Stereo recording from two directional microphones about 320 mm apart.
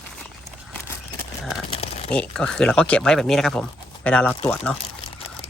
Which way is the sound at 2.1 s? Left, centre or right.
Centre.